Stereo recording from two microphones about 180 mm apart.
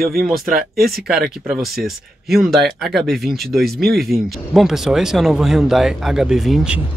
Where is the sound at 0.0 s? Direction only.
55° right (ahead or behind).